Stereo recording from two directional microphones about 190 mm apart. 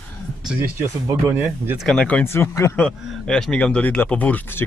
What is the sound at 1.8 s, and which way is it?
A man's voice, 5° left (ahead or behind).